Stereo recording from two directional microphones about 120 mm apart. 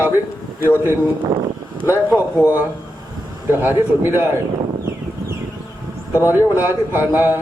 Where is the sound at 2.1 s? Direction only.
15° right (ahead or behind).